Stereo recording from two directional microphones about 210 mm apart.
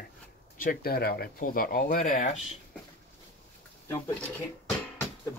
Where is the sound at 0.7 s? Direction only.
45° left (ahead or behind).